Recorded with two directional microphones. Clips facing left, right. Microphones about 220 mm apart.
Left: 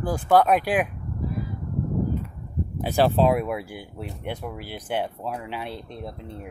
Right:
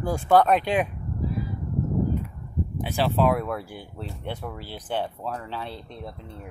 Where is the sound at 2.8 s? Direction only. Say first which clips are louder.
Left 6 dB; 40° left (ahead or behind).